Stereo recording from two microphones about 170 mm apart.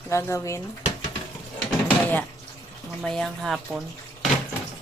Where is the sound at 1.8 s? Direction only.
10° left (ahead or behind).